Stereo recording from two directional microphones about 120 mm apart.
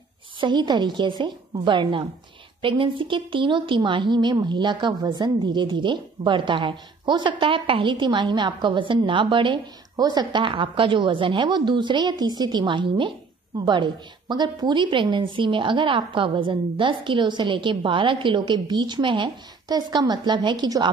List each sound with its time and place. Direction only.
0.4 s a woman's voice: 40° right (ahead or behind)